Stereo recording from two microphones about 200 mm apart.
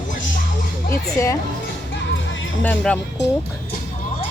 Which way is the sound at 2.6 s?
5° left (ahead or behind).